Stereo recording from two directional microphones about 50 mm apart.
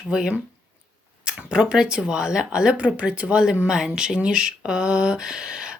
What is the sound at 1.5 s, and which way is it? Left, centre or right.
Speech, centre.